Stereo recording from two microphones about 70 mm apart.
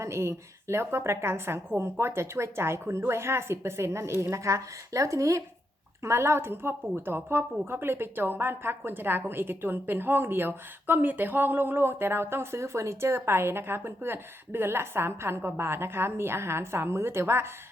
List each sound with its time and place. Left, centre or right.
0.0 s a woman's voice: right